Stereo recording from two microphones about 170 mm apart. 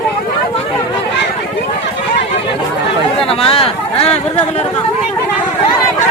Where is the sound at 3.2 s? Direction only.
35° left (ahead or behind).